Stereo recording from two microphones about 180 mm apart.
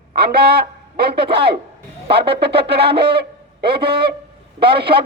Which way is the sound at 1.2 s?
30° right (ahead or behind).